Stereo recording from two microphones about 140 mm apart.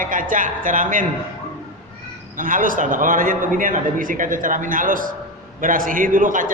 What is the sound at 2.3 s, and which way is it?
A man's voice, 75° right (ahead or behind).